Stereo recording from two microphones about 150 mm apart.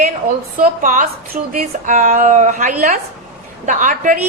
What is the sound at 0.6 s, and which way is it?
A woman's voice, 65° right (ahead or behind).